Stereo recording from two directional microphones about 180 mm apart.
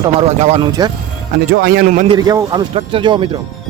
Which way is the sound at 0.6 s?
20° right (ahead or behind).